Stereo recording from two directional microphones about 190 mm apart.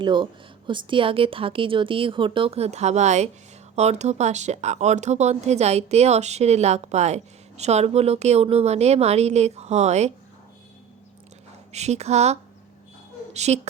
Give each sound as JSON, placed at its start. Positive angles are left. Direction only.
{"t": 0.0, "sound": "speech", "side_deg": -25}
{"t": 11.7, "sound": "a woman's voice", "side_deg": -35}